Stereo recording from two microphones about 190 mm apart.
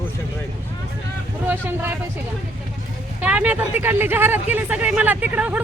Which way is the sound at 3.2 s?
10° right (ahead or behind).